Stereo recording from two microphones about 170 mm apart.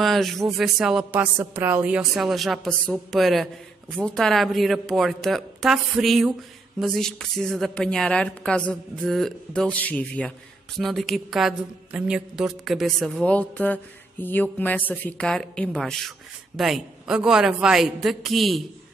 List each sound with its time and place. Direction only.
0.0 s a woman's voice: centre (ahead or behind)